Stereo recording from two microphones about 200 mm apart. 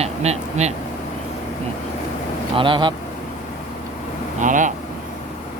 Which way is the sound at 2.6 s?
25° right (ahead or behind).